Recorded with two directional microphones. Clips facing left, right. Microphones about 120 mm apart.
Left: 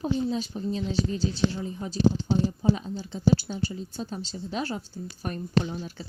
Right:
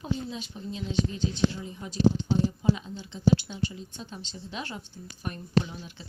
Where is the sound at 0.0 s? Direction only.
35° left (ahead or behind).